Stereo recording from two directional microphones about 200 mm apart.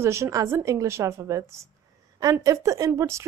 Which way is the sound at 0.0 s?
15° right (ahead or behind).